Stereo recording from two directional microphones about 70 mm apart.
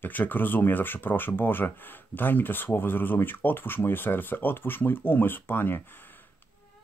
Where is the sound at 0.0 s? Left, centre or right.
Left.